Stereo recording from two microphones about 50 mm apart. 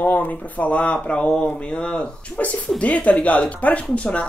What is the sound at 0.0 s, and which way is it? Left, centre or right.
Speech, left.